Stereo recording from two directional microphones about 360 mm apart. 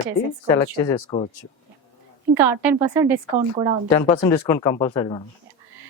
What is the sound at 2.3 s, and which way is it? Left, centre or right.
Speech, centre.